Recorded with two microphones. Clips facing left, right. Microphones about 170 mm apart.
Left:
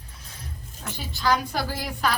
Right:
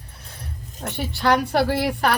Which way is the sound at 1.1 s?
65° right (ahead or behind).